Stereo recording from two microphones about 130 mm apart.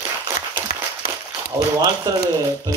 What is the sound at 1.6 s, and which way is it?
Speech, 30° right (ahead or behind).